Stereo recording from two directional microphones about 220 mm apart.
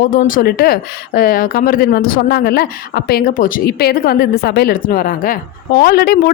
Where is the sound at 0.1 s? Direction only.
40° left (ahead or behind).